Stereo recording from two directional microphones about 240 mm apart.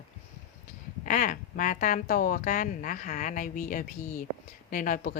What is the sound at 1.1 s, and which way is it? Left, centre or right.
Speech, left.